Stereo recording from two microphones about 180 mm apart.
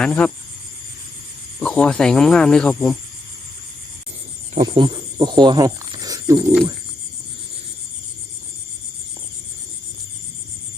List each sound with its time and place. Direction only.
0.0 s speech: 5° left (ahead or behind)
1.5 s speech: 5° left (ahead or behind)
4.6 s speech: 25° right (ahead or behind)